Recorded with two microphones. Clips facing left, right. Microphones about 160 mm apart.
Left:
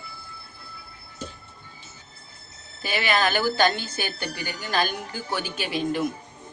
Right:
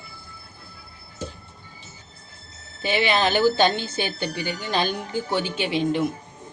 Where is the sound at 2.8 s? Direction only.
25° right (ahead or behind).